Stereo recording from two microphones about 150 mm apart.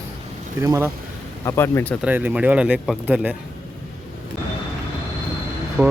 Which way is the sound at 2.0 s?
10° right (ahead or behind).